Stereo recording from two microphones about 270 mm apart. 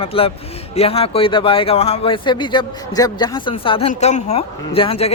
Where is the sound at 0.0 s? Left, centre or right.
Left.